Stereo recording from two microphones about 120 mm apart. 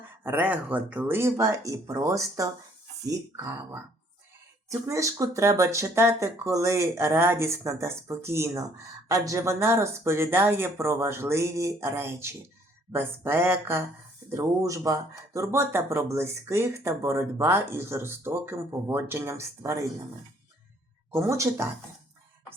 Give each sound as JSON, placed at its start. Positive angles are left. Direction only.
{"t": 0.2, "sound": "speech", "side_deg": -15}
{"t": 21.1, "sound": "speech", "side_deg": -25}